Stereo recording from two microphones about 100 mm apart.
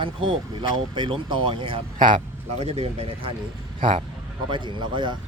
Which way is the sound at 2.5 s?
90° right.